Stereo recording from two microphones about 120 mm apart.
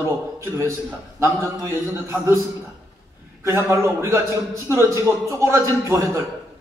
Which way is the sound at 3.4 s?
25° right (ahead or behind).